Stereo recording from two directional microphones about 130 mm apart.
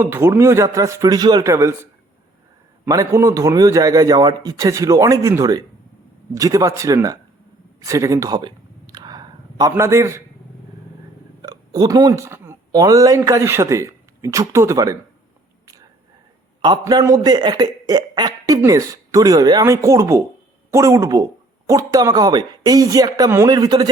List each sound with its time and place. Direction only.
0.0 s speech: 20° right (ahead or behind)
7.8 s a sound: 25° right (ahead or behind)
11.4 s speech: 30° right (ahead or behind)
16.6 s a man's voice: 35° right (ahead or behind)